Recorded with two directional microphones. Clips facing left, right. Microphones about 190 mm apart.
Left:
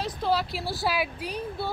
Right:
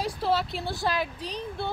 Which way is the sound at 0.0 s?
Centre (ahead or behind).